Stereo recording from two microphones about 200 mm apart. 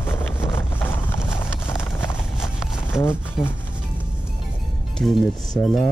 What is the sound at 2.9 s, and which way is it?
Speech, 10° left (ahead or behind).